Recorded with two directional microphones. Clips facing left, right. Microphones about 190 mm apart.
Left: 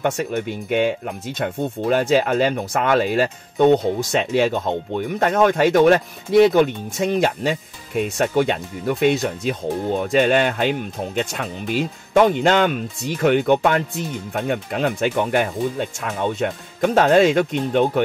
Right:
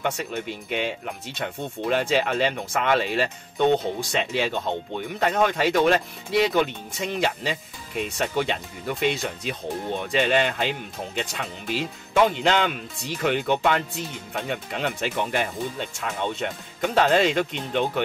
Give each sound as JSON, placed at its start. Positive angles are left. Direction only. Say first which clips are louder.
{"t": 0.0, "sound": "speech", "louder": "left 6 dB", "side_deg": 50}